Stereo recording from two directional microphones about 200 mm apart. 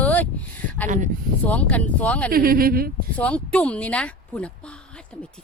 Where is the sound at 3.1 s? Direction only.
5° left (ahead or behind).